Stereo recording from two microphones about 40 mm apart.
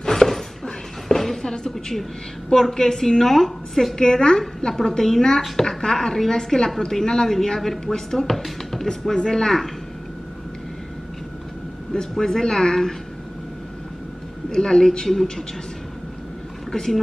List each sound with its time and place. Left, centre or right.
0.0 s a sound: centre
1.5 s a woman's voice: centre
11.9 s a woman's voice: centre
14.5 s a woman's voice: centre
16.7 s a woman's voice: centre